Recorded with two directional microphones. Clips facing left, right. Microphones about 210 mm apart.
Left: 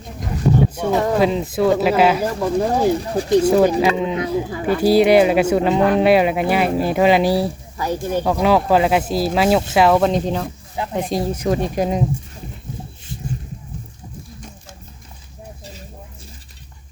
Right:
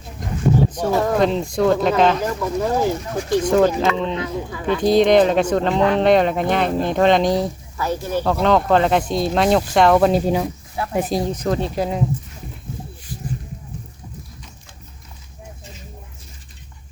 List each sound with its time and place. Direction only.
0.7 s speech: 10° left (ahead or behind)
2.2 s speech: 30° left (ahead or behind)
3.4 s speech: 10° left (ahead or behind)
11.1 s speech: 10° left (ahead or behind)